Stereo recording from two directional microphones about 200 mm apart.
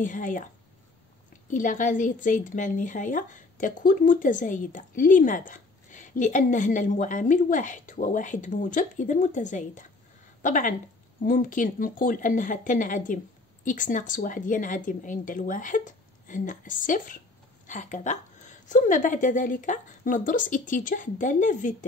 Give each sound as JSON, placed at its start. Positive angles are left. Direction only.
{"t": 0.0, "sound": "a woman's voice", "side_deg": 40}
{"t": 1.5, "sound": "a woman's voice", "side_deg": 40}